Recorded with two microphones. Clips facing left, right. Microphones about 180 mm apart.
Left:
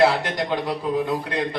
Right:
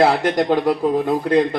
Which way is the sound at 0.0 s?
45° right (ahead or behind).